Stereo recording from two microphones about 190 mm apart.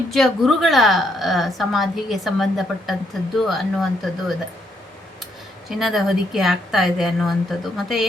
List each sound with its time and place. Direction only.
0.1 s a woman's voice: centre (ahead or behind)
5.6 s a woman's voice: centre (ahead or behind)